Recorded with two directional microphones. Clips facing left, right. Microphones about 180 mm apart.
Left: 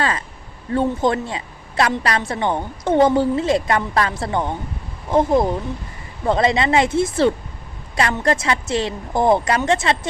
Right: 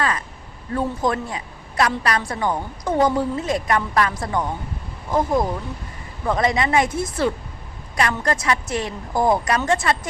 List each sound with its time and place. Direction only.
0.7 s a woman's voice: 25° left (ahead or behind)